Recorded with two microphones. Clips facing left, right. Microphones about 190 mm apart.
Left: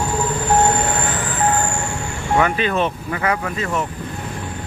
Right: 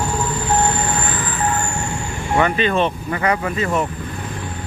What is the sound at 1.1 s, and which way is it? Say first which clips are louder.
Vehicle: left 2 dB; 75° left (ahead or behind).